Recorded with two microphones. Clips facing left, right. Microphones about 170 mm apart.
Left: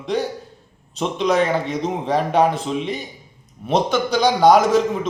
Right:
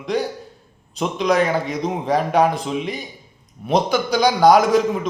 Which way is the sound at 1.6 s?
30° left (ahead or behind).